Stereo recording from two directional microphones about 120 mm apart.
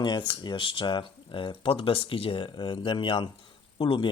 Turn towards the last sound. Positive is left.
turn(degrees=40)  # may be behind; listen again after turning